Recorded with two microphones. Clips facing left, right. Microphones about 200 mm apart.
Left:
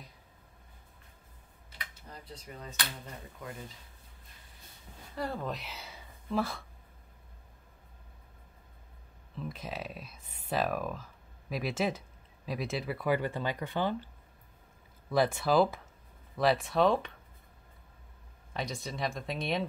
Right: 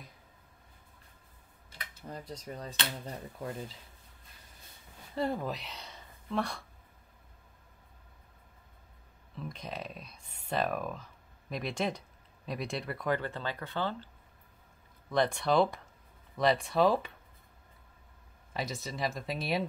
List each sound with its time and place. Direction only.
2.0 s speech: 45° right (ahead or behind)
3.3 s speech: 30° right (ahead or behind)
5.1 s speech: 25° right (ahead or behind)
5.4 s speech: centre (ahead or behind)
9.3 s speech: centre (ahead or behind)
15.0 s speech: 5° left (ahead or behind)
18.5 s speech: centre (ahead or behind)